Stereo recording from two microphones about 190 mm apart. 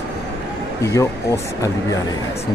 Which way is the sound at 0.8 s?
15° left (ahead or behind).